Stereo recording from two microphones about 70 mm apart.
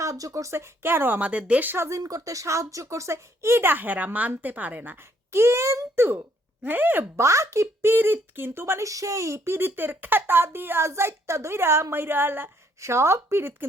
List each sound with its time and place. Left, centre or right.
0.0 s speech: right; by 1.7 s centre
1.7 s speech: right
2.0 s speech: right
5.3 s speech: right
6.7 s speech: right
7.2 s speech: right
8.9 s speech: right